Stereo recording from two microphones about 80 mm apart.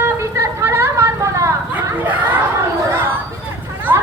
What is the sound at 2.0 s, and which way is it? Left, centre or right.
Chatter, right.